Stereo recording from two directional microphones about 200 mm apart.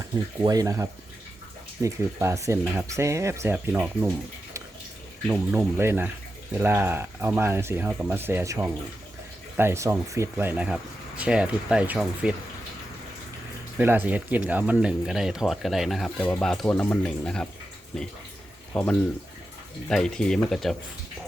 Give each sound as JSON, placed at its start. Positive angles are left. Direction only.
{"t": 0.0, "sound": "speech", "side_deg": -20}
{"t": 5.3, "sound": "speech", "side_deg": -10}
{"t": 13.7, "sound": "speech", "side_deg": -10}